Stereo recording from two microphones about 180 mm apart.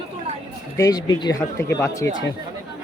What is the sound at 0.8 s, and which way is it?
Speech, 20° left (ahead or behind).